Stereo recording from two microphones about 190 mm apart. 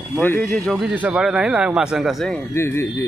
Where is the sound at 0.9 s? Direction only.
5° right (ahead or behind).